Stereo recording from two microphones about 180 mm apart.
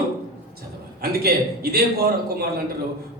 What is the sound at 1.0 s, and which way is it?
A man's voice, 60° right (ahead or behind).